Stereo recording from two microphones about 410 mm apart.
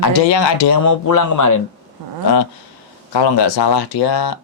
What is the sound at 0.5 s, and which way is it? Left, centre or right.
Speech, left.